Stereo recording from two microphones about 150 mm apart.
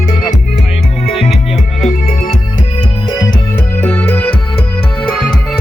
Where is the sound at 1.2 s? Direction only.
Centre (ahead or behind).